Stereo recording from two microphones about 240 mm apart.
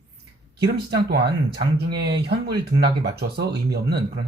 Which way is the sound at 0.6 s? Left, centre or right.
Right.